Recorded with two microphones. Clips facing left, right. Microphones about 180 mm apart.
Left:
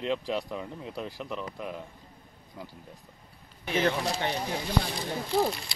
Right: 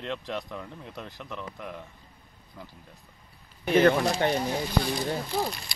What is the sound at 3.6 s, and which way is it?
Speech, 55° right (ahead or behind).